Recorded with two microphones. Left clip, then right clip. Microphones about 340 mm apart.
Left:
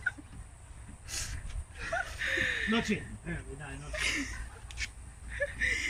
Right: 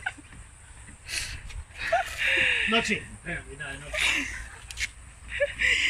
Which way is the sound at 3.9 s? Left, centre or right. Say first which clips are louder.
Right 7 dB; centre.